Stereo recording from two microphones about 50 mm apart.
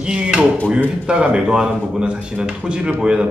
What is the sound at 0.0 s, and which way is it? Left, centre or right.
A man's voice, centre.